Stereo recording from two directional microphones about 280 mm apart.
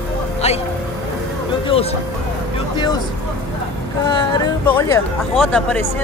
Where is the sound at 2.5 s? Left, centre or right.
Centre.